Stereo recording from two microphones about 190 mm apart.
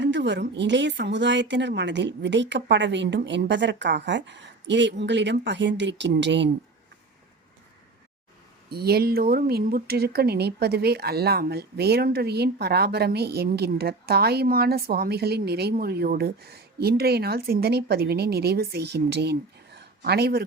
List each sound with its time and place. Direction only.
0.0 s a woman's voice: 65° right (ahead or behind)
8.7 s speech: 55° right (ahead or behind)